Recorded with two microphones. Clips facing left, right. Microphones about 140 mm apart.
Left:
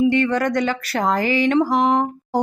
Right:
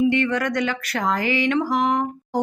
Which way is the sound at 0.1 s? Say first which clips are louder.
Left 3 dB; 35° left (ahead or behind).